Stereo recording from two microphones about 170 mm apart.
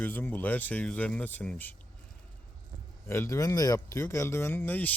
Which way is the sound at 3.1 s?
15° left (ahead or behind).